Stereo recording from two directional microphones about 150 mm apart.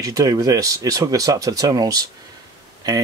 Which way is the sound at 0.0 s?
25° right (ahead or behind).